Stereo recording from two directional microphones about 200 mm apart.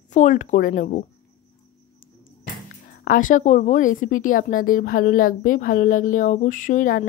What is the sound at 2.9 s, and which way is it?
A woman's voice, 40° left (ahead or behind).